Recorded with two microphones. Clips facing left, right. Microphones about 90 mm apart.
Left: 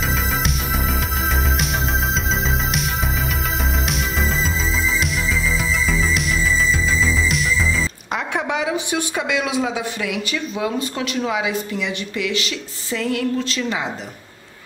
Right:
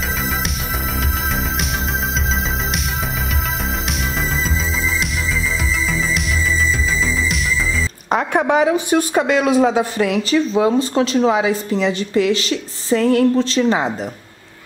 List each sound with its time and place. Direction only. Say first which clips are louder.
5.9 s music: even; centre (ahead or behind)
8.1 s a woman's voice: right 9 dB; 45° right (ahead or behind)